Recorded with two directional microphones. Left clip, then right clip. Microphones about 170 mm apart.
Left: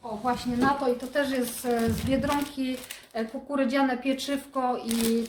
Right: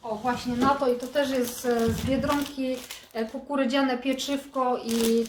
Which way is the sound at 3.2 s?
15° left (ahead or behind).